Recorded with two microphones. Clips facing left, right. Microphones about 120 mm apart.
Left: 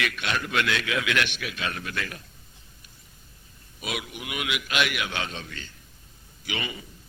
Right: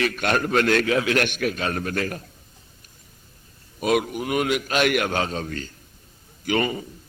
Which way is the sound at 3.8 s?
45° right (ahead or behind).